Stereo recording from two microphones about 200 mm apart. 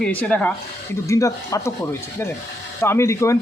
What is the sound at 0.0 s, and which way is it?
A man's voice, 5° left (ahead or behind).